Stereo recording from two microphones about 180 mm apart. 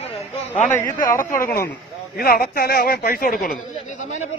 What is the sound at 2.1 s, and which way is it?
A man's voice, 55° left (ahead or behind).